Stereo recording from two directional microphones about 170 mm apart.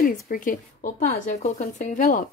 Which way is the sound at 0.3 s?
55° left (ahead or behind).